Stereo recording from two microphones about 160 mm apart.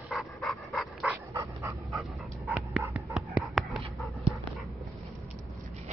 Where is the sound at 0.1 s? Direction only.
Centre (ahead or behind).